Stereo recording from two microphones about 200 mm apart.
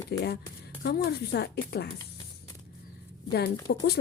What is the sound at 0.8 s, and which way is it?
Speech, 55° left (ahead or behind).